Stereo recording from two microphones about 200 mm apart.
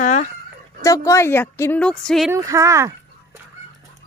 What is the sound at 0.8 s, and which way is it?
Speech, 15° left (ahead or behind).